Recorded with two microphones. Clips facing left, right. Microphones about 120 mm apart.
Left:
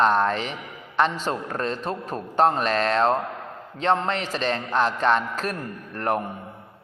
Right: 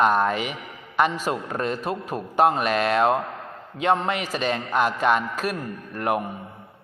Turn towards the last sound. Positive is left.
turn(degrees=-10)  # may be behind; listen again after turning